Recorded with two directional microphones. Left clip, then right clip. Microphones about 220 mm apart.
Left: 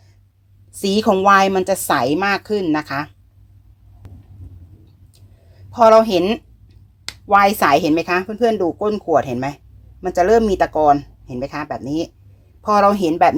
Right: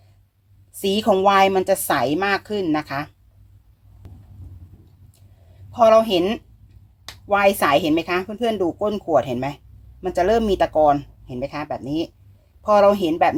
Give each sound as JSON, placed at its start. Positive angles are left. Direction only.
{"t": 0.8, "sound": "a woman's voice", "side_deg": 20}
{"t": 4.0, "sound": "heart sounds", "side_deg": 0}
{"t": 5.7, "sound": "a woman's voice", "side_deg": 20}